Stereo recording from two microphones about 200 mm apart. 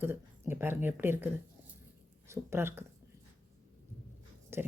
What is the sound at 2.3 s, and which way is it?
Speech, 10° right (ahead or behind).